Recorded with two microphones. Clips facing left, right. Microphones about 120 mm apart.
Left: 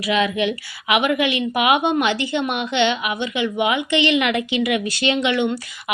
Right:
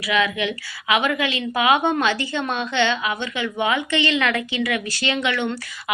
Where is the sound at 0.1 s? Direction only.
20° left (ahead or behind).